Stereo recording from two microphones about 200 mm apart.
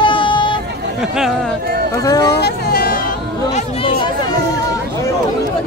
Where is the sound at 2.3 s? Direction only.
50° left (ahead or behind).